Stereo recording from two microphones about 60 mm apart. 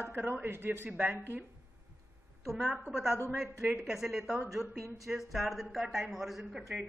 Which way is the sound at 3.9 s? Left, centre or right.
Centre.